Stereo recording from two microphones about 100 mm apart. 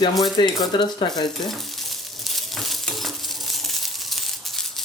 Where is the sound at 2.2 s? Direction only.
Centre (ahead or behind).